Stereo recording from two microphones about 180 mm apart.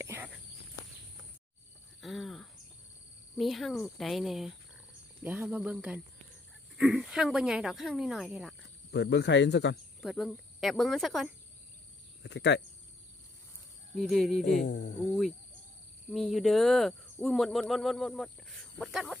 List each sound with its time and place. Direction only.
0.0 s walk: 10° right (ahead or behind)
2.0 s cricket: centre (ahead or behind)
3.3 s speech: centre (ahead or behind)
8.9 s speech: 70° left (ahead or behind)
10.0 s speech: centre (ahead or behind)
12.2 s speech: 75° left (ahead or behind)
13.9 s speech: centre (ahead or behind)
14.7 s cricket: 65° left (ahead or behind)
16.1 s speech: centre (ahead or behind)